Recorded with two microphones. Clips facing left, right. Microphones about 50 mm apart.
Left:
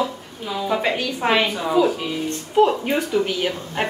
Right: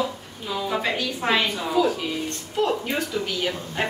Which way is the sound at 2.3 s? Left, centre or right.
Left.